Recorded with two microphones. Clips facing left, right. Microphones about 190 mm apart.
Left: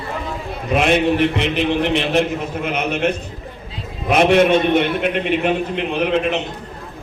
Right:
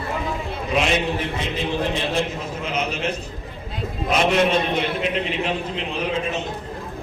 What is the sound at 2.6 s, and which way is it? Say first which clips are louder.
Speech: left 5 dB; 60° left (ahead or behind).